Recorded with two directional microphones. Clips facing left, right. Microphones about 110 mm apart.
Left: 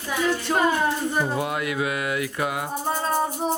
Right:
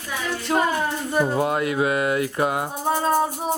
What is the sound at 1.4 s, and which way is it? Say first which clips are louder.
Speech: right 4 dB; 35° right (ahead or behind).